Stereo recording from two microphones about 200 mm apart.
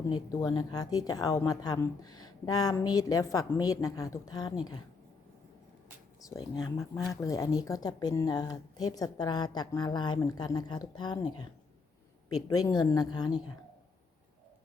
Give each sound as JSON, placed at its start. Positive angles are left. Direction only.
{"t": 0.1, "sound": "a woman's voice", "side_deg": 20}
{"t": 6.2, "sound": "a woman's voice", "side_deg": 20}
{"t": 12.3, "sound": "a woman's voice", "side_deg": 20}